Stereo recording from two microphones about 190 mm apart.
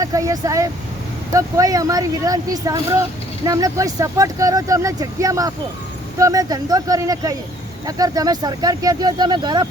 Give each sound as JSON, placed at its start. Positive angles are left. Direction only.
{"t": 0.0, "sound": "speech", "side_deg": -15}